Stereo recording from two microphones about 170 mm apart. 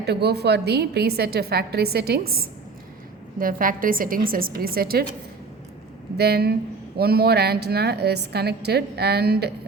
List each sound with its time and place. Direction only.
0.0 s a woman's voice: 75° right (ahead or behind)
6.1 s a woman's voice: 70° right (ahead or behind)